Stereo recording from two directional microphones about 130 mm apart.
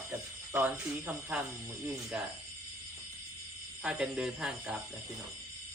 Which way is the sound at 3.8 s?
5° right (ahead or behind).